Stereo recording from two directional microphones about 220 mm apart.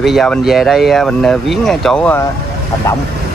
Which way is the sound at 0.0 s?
Centre (ahead or behind).